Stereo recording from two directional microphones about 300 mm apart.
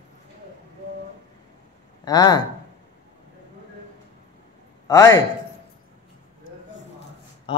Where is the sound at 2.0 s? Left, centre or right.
Centre.